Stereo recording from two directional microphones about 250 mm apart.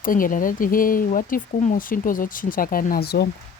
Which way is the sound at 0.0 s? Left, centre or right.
Left.